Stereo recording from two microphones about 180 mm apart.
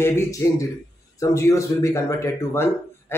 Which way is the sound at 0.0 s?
15° left (ahead or behind).